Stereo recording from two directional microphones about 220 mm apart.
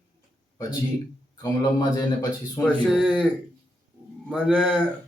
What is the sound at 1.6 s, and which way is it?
A man's voice, 15° left (ahead or behind).